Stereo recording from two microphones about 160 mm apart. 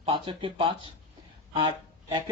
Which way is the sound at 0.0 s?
30° right (ahead or behind).